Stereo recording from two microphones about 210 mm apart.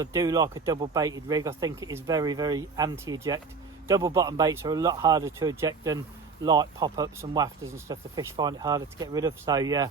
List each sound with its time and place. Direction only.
0.0 s speech: 15° right (ahead or behind)